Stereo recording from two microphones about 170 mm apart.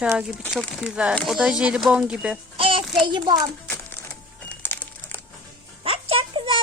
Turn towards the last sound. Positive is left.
turn(degrees=-30)  # may be behind; listen again after turning